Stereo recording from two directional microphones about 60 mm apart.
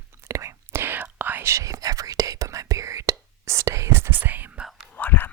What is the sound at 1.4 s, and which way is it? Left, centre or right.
Whispering, right.